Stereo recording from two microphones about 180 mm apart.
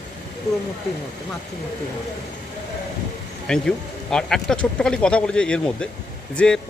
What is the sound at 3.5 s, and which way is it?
Speech, 5° left (ahead or behind).